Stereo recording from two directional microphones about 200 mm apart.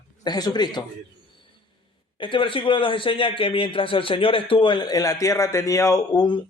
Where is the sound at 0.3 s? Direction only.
20° left (ahead or behind).